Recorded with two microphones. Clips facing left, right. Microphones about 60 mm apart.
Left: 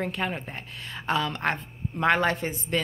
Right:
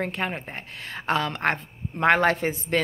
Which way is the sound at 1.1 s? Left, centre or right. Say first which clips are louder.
Right 2 dB; right.